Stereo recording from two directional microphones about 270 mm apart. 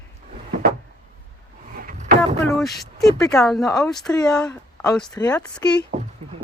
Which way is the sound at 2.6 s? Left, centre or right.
Centre.